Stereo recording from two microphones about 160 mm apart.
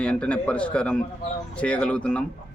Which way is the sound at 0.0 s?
5° left (ahead or behind).